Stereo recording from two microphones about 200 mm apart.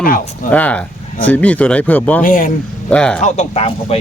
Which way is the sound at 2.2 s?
40° left (ahead or behind).